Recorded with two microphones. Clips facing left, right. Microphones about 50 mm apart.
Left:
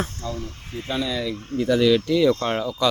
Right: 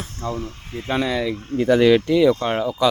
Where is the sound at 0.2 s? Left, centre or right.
Right.